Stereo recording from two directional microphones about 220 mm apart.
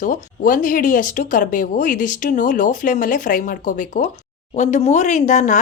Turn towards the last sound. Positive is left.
turn(degrees=35)  # may be behind; listen again after turning